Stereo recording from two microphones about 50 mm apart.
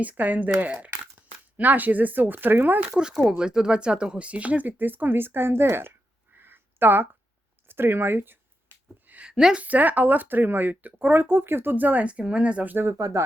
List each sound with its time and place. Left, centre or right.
0.0 s speech: right
2.9 s speech: centre; by 5.9 s right
6.3 s a sound: right
7.7 s speech: right
9.3 s a woman's voice: centre
9.6 s speech: right
12.8 s speech: right